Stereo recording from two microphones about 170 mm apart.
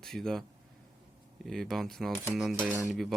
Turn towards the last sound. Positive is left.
turn(degrees=0)  # may be behind; listen again after turning